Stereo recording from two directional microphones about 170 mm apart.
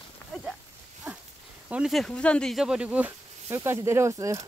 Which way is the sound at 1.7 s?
5° right (ahead or behind).